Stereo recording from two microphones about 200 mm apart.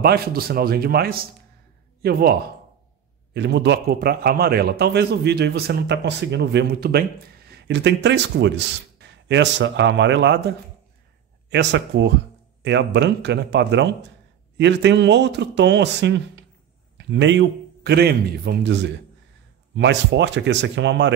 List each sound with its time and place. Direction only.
0.0 s a man's voice: 50° right (ahead or behind)
3.3 s a man's voice: 60° right (ahead or behind)
11.5 s a man's voice: 60° right (ahead or behind)